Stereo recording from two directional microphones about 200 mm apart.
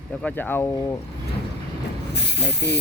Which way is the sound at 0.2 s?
5° left (ahead or behind).